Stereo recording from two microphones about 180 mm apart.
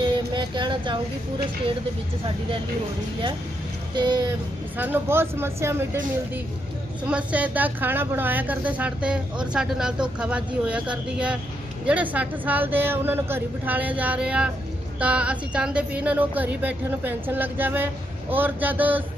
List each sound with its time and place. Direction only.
0.0 s a sound: 25° right (ahead or behind)
3.9 s speech: 25° right (ahead or behind)
4.7 s speech: 10° right (ahead or behind)
7.1 s speech: 5° right (ahead or behind)